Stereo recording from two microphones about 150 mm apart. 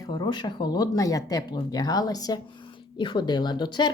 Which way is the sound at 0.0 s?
30° left (ahead or behind).